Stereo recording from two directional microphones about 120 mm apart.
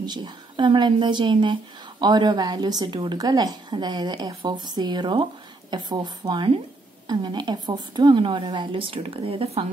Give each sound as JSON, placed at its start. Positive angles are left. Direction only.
{"t": 0.0, "sound": "a woman's voice", "side_deg": -40}